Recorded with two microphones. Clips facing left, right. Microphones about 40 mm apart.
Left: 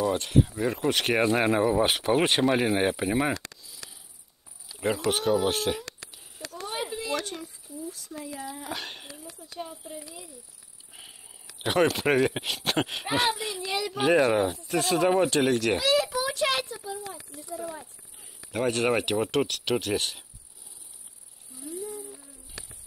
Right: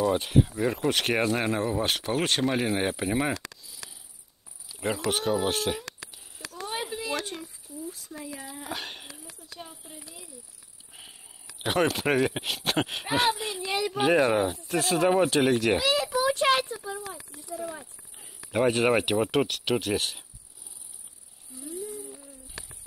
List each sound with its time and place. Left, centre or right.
0.0 s speech: centre
4.6 s insect: centre
6.7 s a sound: centre
7.2 s speech: centre
14.0 s speech: centre
16.3 s a child's voice: right
17.6 s snake: centre
18.5 s speech: centre
21.5 s cricket: centre
22.0 s a sound: centre